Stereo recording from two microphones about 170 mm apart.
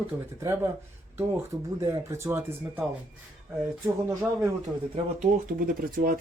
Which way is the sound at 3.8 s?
15° right (ahead or behind).